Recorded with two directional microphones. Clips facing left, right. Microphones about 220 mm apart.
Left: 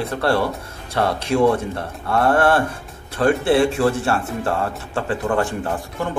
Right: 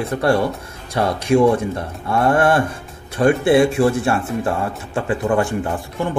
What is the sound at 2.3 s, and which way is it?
Speech, 15° right (ahead or behind).